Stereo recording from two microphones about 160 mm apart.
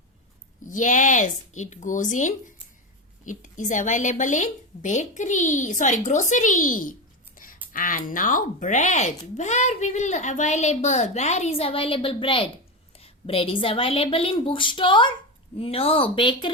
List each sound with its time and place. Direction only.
0.6 s speech: 55° left (ahead or behind)
7.4 s a sound: 60° left (ahead or behind)
7.7 s a woman's voice: 60° left (ahead or behind); by 16.5 s 30° left (ahead or behind)